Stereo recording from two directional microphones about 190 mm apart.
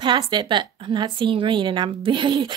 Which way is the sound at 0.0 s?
25° right (ahead or behind).